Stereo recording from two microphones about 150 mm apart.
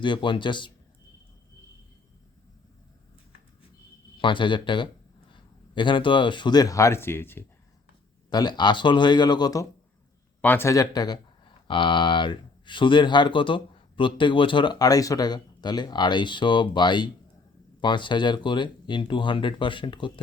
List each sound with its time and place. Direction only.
0.0 s speech: 30° left (ahead or behind)
4.2 s speech: 35° left (ahead or behind); by 7.4 s 15° left (ahead or behind)
8.3 s speech: 30° left (ahead or behind)
10.4 s speech: 15° left (ahead or behind); by 20.1 s 35° left (ahead or behind)